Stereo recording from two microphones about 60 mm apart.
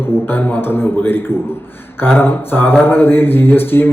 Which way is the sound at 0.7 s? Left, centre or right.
Left.